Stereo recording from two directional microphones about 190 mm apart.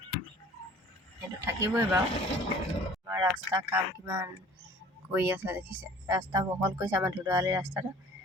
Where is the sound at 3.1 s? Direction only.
15° right (ahead or behind).